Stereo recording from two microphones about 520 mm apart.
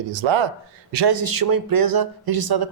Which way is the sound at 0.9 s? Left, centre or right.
Right.